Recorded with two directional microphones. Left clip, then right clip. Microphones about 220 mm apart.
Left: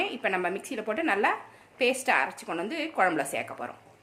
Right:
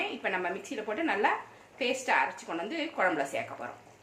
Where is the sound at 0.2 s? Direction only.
55° left (ahead or behind).